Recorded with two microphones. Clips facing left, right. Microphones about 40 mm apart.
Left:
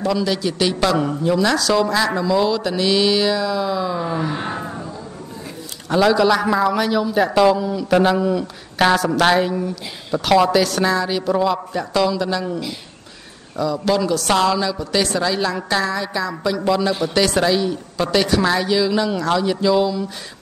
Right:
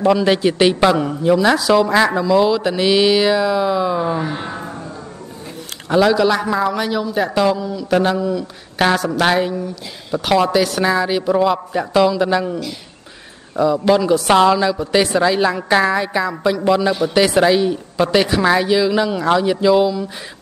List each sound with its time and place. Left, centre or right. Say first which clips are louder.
0.0 s a woman's voice: right 6 dB; right
2.1 s speech: right 3 dB; centre
5.9 s a man's voice: right 1 dB; centre
8.7 s a man's voice: even; centre; by 12.4 s right
13.6 s a woman's voice: right 5 dB; right